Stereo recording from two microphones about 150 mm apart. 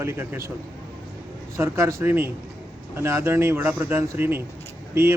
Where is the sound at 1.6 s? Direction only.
15° right (ahead or behind).